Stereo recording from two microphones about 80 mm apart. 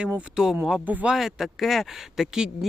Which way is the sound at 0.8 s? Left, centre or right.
Centre.